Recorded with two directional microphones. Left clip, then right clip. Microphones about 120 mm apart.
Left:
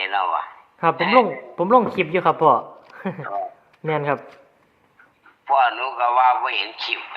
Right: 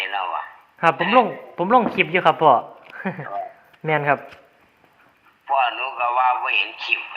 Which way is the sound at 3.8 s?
20° right (ahead or behind).